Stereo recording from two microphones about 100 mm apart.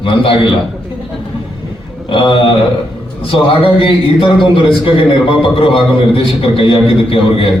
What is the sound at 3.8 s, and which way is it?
A man's voice, 60° left (ahead or behind).